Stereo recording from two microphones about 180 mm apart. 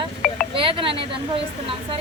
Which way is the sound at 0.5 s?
30° right (ahead or behind).